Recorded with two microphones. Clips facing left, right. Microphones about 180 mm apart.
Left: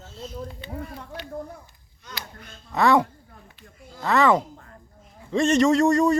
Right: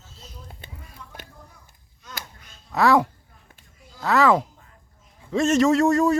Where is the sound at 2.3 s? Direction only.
55° left (ahead or behind).